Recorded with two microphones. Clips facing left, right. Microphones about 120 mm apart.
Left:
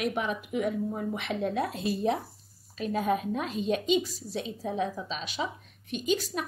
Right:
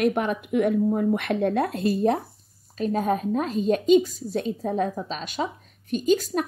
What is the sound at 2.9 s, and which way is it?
A woman's voice, 40° right (ahead or behind).